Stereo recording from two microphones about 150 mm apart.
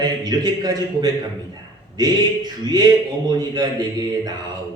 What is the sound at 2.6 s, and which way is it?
A man's voice, 25° right (ahead or behind).